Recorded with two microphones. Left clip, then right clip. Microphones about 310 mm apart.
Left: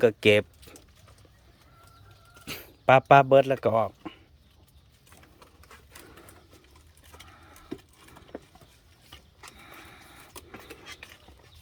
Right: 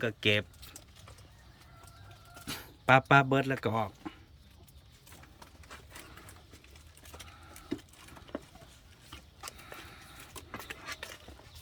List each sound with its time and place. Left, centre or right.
0.0 s speech: centre
2.4 s a sound: centre
9.6 s vehicle: centre